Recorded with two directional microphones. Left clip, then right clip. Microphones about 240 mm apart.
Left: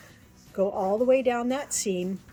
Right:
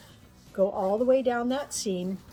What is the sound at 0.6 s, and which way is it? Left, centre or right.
Speech, left.